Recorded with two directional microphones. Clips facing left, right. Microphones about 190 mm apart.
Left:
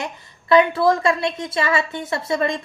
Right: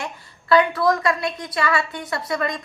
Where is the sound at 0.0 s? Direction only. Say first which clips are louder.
Left 2 dB; 20° left (ahead or behind).